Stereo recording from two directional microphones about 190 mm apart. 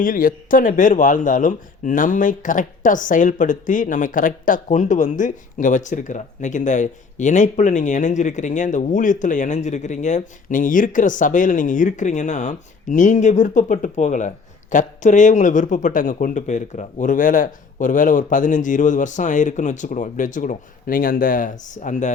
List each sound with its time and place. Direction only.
0.0 s speech: 45° left (ahead or behind)